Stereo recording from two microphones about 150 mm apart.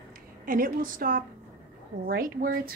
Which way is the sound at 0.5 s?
65° right (ahead or behind).